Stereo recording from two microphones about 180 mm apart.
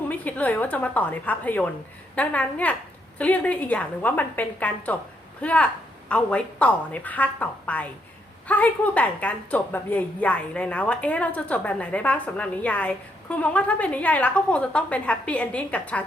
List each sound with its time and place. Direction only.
0.1 s a woman's voice: 10° left (ahead or behind)